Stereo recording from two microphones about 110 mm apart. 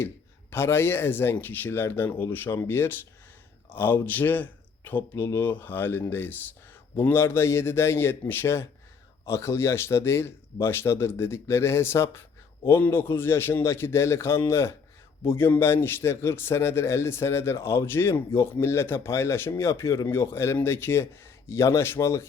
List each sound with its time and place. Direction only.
0.5 s a man's voice: 20° left (ahead or behind)